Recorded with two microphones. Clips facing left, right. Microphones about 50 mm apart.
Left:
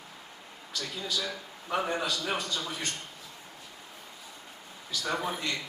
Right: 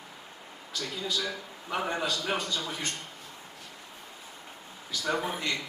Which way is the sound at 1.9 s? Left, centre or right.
Right.